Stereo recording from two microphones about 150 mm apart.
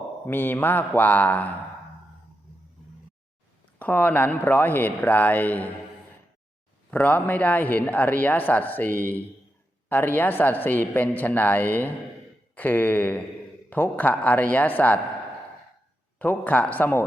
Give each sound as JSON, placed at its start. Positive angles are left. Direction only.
{"t": 0.3, "sound": "a man's voice", "side_deg": 15}
{"t": 3.8, "sound": "a man's voice", "side_deg": 10}
{"t": 6.9, "sound": "a man's voice", "side_deg": 10}
{"t": 16.1, "sound": "a man's voice", "side_deg": 10}